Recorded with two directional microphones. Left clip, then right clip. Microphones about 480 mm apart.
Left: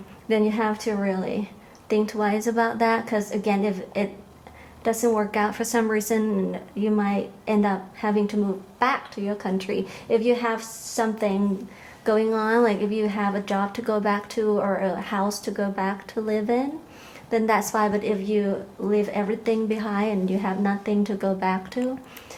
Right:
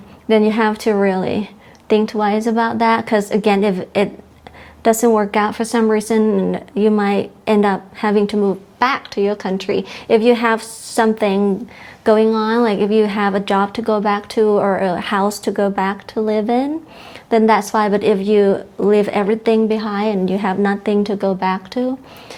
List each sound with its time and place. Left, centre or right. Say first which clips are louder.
0.3 s a woman's voice: right 8 dB; right